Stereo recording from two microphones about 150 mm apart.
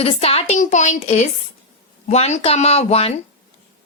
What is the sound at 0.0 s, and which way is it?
A woman's voice, 45° left (ahead or behind).